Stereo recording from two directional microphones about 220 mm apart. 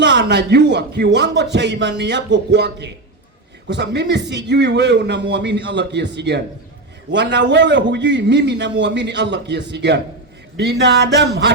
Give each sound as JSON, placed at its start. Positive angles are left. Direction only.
{"t": 0.0, "sound": "a man's voice", "side_deg": -50}